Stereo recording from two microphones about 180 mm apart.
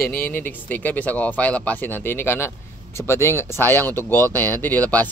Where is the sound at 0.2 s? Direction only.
10° left (ahead or behind).